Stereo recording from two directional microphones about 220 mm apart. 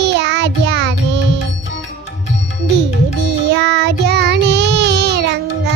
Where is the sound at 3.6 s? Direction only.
50° right (ahead or behind).